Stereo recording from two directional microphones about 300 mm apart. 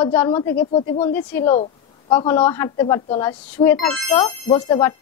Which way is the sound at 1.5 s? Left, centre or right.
Centre.